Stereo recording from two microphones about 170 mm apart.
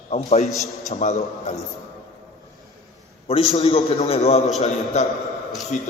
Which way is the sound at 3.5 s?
35° left (ahead or behind).